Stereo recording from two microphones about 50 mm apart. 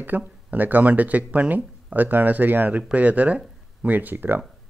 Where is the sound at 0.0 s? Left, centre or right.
Right.